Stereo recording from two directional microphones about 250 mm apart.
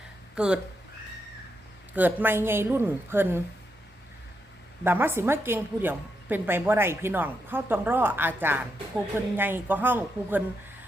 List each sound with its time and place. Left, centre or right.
0.3 s speech: centre
1.9 s a woman's voice: centre
4.8 s a woman's voice: centre